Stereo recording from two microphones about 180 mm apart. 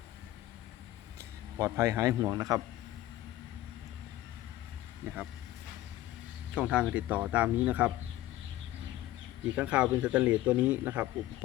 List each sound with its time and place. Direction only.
1.5 s speech: 15° right (ahead or behind)
6.5 s speech: 5° right (ahead or behind)
9.6 s speech: 5° right (ahead or behind)